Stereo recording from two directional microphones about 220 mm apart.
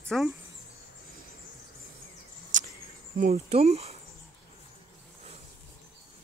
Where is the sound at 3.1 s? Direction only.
35° right (ahead or behind).